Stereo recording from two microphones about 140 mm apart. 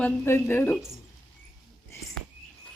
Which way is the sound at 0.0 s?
15° left (ahead or behind).